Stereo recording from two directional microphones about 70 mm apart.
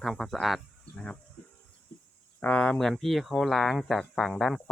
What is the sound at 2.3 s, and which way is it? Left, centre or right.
Speech, left.